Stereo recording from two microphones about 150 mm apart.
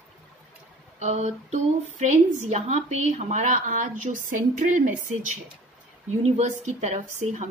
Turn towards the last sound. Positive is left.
turn(degrees=-50)  # may be behind; listen again after turning